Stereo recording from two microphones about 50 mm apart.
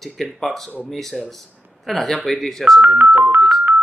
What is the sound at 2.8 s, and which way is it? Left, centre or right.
Speech, right.